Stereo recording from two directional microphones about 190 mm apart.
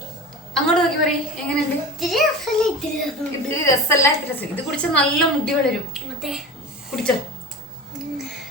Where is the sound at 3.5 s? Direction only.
15° left (ahead or behind).